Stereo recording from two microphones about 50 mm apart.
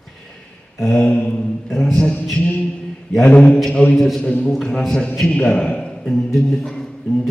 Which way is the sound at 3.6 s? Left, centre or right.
Centre.